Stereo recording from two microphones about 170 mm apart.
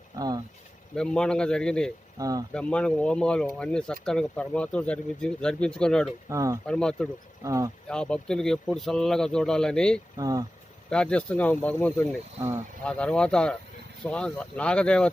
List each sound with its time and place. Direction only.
0.2 s speech: 20° right (ahead or behind)
0.9 s speech: 5° left (ahead or behind)
2.1 s speech: 20° right (ahead or behind)
2.5 s speech: 5° left (ahead or behind)
6.2 s speech: 20° right (ahead or behind)
6.7 s speech: 5° left (ahead or behind)
7.4 s speech: 20° right (ahead or behind)
7.9 s speech: 5° left (ahead or behind)
10.2 s speech: 20° right (ahead or behind)
10.8 s speech: 5° left (ahead or behind)